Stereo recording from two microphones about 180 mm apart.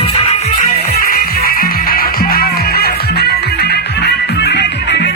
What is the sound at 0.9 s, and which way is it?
Music, 55° left (ahead or behind).